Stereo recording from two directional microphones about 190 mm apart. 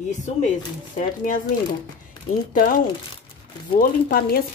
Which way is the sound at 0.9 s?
45° left (ahead or behind).